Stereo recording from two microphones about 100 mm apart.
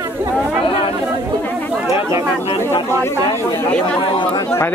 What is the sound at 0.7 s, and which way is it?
Chatter, 65° left (ahead or behind).